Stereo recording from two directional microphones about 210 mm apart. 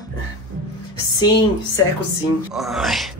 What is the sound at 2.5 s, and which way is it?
Speech, centre (ahead or behind).